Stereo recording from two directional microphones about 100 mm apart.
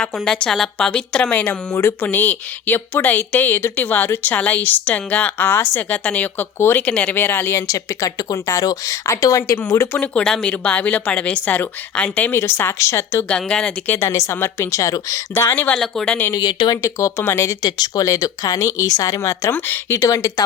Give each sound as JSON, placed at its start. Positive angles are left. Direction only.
{"t": 0.0, "sound": "a woman's voice", "side_deg": 10}
{"t": 7.7, "sound": "speech", "side_deg": 35}
{"t": 10.0, "sound": "a woman's voice", "side_deg": 10}
{"t": 13.2, "sound": "a woman's voice", "side_deg": 10}
{"t": 13.9, "sound": "speech", "side_deg": 30}
{"t": 15.8, "sound": "speech", "side_deg": 5}
{"t": 16.3, "sound": "speech", "side_deg": 45}
{"t": 16.8, "sound": "speech", "side_deg": 25}
{"t": 17.6, "sound": "speech", "side_deg": 40}
{"t": 20.0, "sound": "speech", "side_deg": 30}